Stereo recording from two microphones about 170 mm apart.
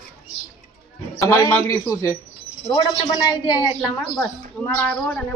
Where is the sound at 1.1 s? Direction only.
15° left (ahead or behind).